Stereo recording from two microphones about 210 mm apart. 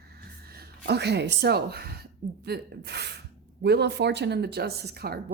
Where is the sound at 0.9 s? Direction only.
50° right (ahead or behind).